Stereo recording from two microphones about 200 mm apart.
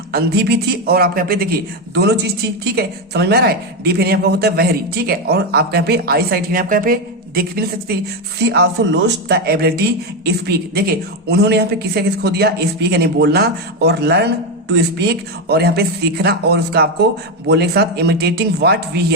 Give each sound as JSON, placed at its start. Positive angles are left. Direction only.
{"t": 0.1, "sound": "a woman's voice", "side_deg": -55}